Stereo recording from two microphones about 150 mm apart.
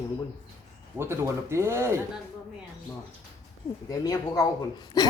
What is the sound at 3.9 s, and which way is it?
A woman's voice, 25° left (ahead or behind).